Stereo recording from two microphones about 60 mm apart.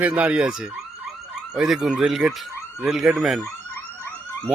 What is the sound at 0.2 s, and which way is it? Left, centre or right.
Speech, right.